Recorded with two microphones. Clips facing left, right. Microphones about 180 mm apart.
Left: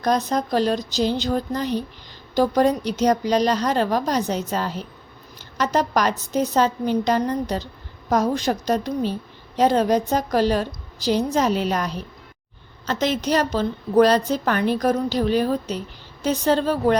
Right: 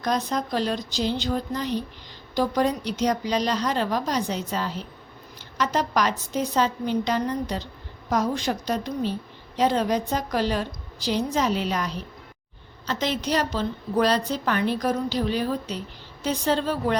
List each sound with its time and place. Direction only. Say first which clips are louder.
0.0 s a woman's voice: left 4 dB; 45° left (ahead or behind)